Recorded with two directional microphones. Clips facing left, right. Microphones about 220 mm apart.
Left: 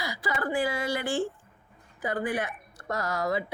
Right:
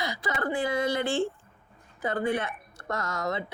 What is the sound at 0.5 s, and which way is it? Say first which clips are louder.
Speech: right 2 dB; 20° right (ahead or behind).